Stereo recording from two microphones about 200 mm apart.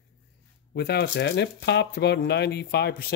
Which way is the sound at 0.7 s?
55° left (ahead or behind).